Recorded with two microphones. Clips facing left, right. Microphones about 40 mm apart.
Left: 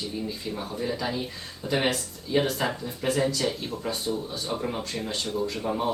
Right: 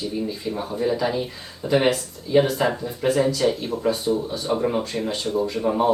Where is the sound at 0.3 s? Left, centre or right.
Centre.